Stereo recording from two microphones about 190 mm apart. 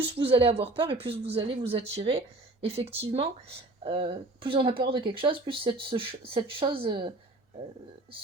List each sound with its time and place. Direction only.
0.0 s speech: 30° right (ahead or behind)